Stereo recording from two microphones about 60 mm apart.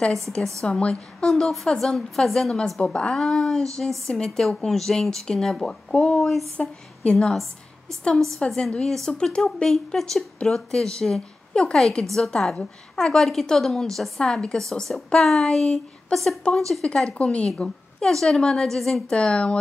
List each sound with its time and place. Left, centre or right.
0.1 s speech: centre
3.2 s a woman's voice: centre; by 7.2 s left
7.2 s speech: centre
8.5 s a woman's voice: centre
16.8 s speech: centre